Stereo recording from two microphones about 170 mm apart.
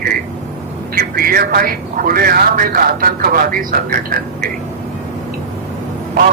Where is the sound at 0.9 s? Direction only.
55° right (ahead or behind).